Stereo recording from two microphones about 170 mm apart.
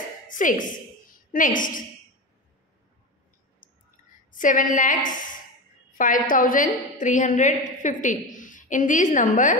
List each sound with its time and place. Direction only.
0.3 s a woman's voice: 50° left (ahead or behind)
3.6 s a sound: 50° left (ahead or behind)
4.3 s a woman's voice: 50° left (ahead or behind)